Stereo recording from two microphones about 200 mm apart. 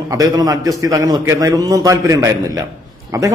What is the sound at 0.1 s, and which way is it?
A man's voice, 15° right (ahead or behind).